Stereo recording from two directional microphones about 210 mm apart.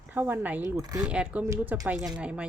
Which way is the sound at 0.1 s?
10° right (ahead or behind).